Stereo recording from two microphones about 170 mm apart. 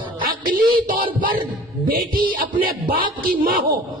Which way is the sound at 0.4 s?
55° right (ahead or behind).